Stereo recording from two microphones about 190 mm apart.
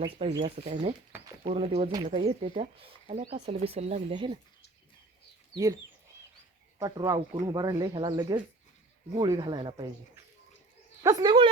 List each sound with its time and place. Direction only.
0.0 s speech: 30° right (ahead or behind)
6.7 s speech: 20° right (ahead or behind)
11.0 s speech: 20° right (ahead or behind)